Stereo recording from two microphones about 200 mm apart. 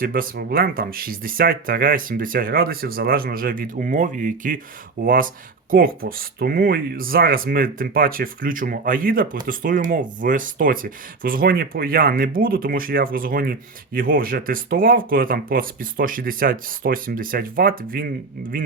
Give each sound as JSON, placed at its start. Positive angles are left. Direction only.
{"t": 0.0, "sound": "speech", "side_deg": -45}